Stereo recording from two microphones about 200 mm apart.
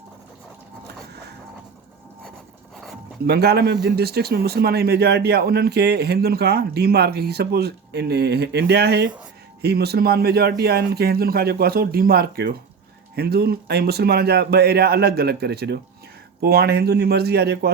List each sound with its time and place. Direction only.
3.2 s speech: 55° right (ahead or behind)